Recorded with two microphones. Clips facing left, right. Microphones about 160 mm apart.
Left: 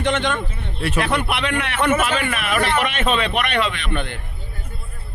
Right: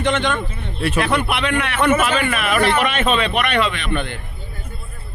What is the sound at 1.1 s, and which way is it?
A man's voice, 60° right (ahead or behind).